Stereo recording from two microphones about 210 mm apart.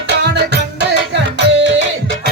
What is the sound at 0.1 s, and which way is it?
Music, 55° right (ahead or behind).